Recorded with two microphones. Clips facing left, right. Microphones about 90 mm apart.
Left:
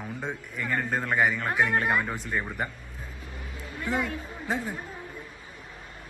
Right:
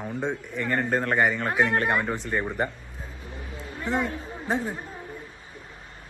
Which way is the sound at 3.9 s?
40° right (ahead or behind).